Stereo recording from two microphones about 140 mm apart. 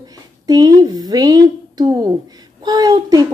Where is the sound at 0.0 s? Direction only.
30° right (ahead or behind).